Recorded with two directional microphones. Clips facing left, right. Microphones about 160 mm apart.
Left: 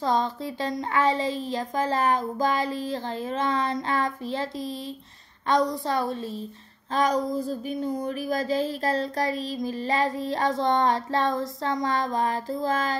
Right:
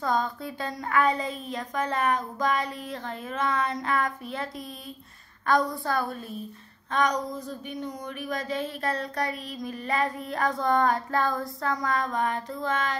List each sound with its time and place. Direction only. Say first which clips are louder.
0.0 s speech: left 2 dB; 25° left (ahead or behind)